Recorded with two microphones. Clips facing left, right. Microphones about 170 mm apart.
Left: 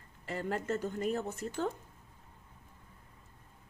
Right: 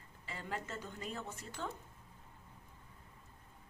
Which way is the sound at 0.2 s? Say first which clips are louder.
Left 8 dB; 50° left (ahead or behind).